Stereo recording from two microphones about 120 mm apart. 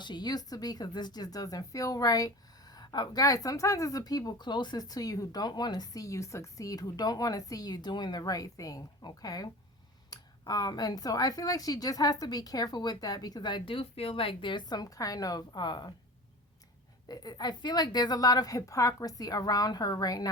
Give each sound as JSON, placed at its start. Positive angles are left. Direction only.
{"t": 0.0, "sound": "speech", "side_deg": 40}
{"t": 17.1, "sound": "speech", "side_deg": 35}